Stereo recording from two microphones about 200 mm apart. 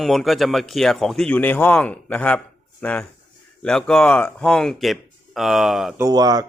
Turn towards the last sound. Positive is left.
turn(degrees=-20)  # may be behind; listen again after turning